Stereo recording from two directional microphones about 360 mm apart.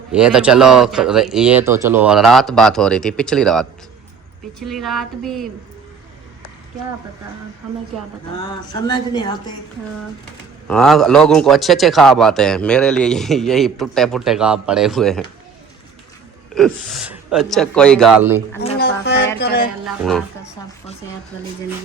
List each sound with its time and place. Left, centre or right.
0.1 s a man's voice: centre
8.4 s speech: centre
10.7 s a man's voice: centre
16.6 s a man's voice: centre
18.8 s speech: left
19.8 s a man's voice: centre